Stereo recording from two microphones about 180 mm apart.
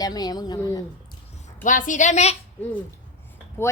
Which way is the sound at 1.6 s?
45° left (ahead or behind).